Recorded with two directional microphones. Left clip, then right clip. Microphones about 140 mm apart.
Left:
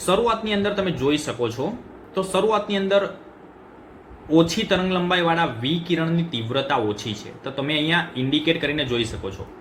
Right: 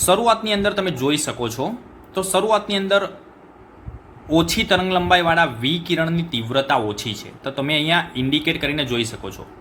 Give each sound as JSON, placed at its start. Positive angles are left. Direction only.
{"t": 0.0, "sound": "speech", "side_deg": -50}
{"t": 4.3, "sound": "speech", "side_deg": -50}